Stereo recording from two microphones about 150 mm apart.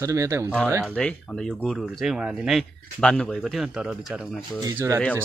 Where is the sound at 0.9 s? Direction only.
5° left (ahead or behind).